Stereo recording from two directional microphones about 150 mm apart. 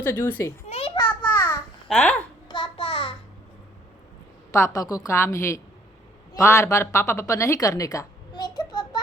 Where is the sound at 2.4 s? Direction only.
30° left (ahead or behind).